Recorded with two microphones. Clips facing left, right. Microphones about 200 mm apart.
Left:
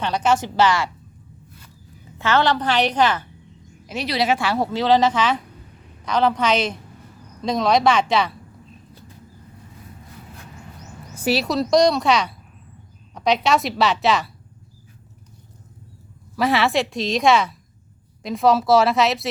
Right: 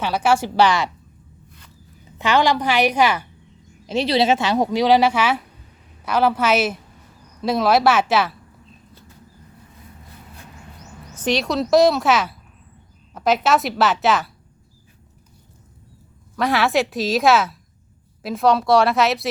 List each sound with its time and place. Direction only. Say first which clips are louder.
0.0 s speech: right 1 dB; 10° right (ahead or behind)
2.1 s speech: right 1 dB; 15° right (ahead or behind)
3.8 s a woman's voice: right 4 dB; 25° right (ahead or behind); by 8.4 s 5° right (ahead or behind)
11.1 s a woman's voice: even; 10° left (ahead or behind)
16.3 s a woman's voice: even; centre (ahead or behind)